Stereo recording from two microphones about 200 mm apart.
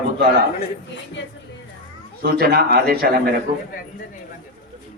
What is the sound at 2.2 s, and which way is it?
Speech, 45° right (ahead or behind).